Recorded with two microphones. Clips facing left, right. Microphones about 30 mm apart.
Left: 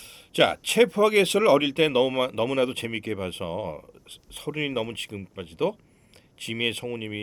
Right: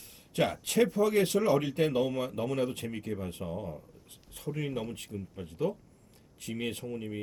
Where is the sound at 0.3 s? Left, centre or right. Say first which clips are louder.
Left 7 dB; left.